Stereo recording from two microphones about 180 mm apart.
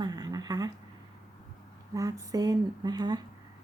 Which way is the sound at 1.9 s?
20° right (ahead or behind).